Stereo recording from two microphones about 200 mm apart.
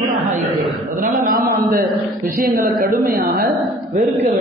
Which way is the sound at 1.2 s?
45° right (ahead or behind).